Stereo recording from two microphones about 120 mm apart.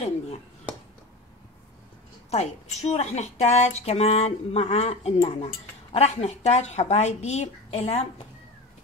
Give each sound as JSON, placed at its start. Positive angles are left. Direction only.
{"t": 2.3, "sound": "speech", "side_deg": 65}